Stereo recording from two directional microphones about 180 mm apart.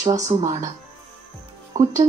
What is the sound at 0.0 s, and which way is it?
Speech, 20° right (ahead or behind).